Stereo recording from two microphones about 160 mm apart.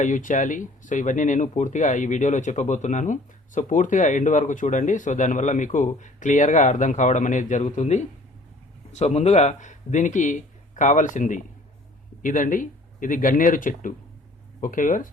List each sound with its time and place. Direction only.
0.0 s speech: 55° left (ahead or behind)